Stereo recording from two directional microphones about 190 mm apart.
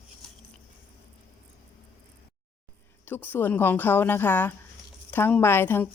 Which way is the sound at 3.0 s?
10° left (ahead or behind).